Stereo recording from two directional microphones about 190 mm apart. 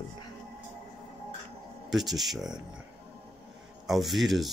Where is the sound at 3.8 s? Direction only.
Centre (ahead or behind).